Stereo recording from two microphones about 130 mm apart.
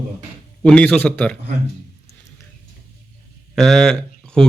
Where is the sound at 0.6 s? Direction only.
5° left (ahead or behind).